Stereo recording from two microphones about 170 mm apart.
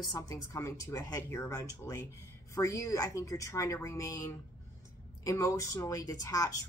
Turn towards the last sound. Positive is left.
turn(degrees=20)  # may be behind; listen again after turning